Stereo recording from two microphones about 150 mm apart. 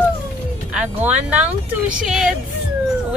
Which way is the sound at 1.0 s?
10° right (ahead or behind).